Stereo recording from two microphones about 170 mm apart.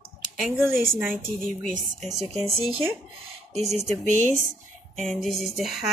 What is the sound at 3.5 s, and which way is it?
Mantra, centre (ahead or behind).